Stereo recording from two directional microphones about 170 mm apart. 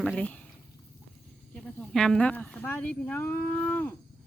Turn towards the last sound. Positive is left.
turn(degrees=10)  # may be behind; listen again after turning